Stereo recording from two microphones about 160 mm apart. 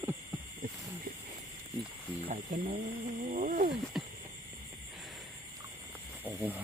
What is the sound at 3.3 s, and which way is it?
Speech, 55° right (ahead or behind).